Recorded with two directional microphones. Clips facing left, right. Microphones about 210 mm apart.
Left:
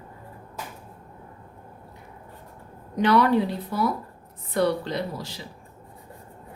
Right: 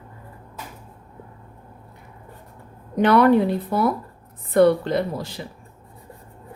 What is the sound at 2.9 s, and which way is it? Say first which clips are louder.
Speech: right 4 dB; 55° right (ahead or behind).